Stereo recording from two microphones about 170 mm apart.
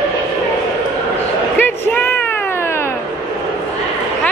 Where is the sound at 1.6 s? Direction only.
10° left (ahead or behind).